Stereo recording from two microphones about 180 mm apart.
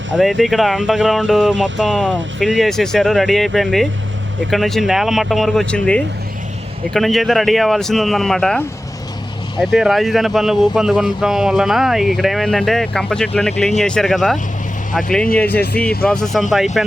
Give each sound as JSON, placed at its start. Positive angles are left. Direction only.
{"t": 0.2, "sound": "speech", "side_deg": 0}
{"t": 15.5, "sound": "speech", "side_deg": 60}
{"t": 16.0, "sound": "speech", "side_deg": 0}